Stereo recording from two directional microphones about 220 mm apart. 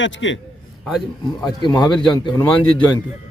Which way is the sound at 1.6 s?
20° left (ahead or behind).